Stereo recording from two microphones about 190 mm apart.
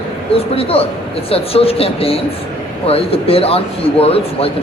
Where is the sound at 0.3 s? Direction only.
30° left (ahead or behind).